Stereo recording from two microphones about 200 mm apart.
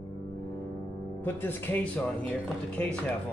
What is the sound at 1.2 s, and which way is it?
Speech, 10° left (ahead or behind).